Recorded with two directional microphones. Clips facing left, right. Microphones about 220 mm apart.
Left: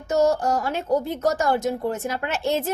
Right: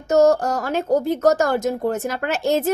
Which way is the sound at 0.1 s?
40° right (ahead or behind).